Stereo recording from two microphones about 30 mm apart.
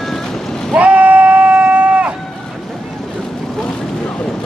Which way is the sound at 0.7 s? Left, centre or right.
Right.